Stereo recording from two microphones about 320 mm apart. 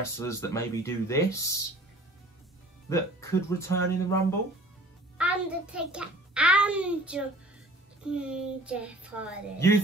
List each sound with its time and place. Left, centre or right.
0.3 s speech: centre
2.9 s speech: centre
5.1 s a child's voice: centre